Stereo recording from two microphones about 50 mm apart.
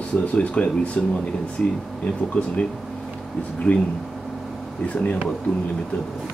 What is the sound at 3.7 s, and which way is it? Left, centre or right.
Speech, left.